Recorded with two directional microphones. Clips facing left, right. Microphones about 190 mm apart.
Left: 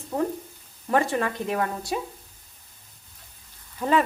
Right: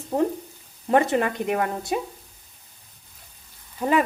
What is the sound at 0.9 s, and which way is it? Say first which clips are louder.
Speech: right 3 dB; 20° right (ahead or behind).